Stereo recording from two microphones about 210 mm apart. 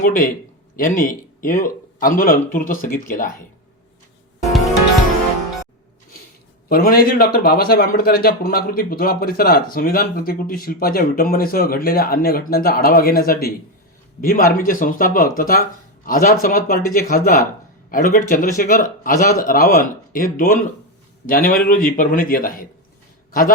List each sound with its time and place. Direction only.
0.0 s speech: 40° left (ahead or behind)
6.7 s speech: 45° left (ahead or behind)